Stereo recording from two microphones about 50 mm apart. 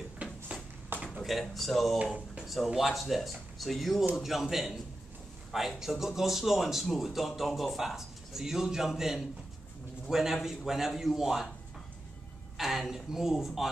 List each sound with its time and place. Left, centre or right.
0.2 s a sound: right
1.2 s speech: centre
12.5 s speech: centre